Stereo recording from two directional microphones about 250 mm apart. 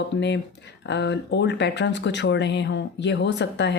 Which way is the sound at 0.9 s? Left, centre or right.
Left.